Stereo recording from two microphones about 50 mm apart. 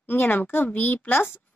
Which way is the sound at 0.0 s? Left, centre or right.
Left.